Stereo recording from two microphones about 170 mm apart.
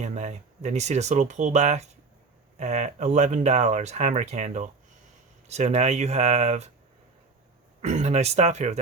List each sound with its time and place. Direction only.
0.0 s speech: 45° right (ahead or behind)
7.8 s speech: 45° right (ahead or behind)